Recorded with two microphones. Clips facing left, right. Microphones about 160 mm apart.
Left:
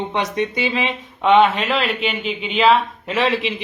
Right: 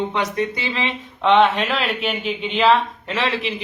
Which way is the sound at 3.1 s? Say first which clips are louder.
Left 4 dB; 15° left (ahead or behind).